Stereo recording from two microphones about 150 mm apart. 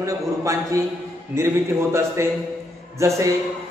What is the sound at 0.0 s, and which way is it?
A man's voice, 20° right (ahead or behind).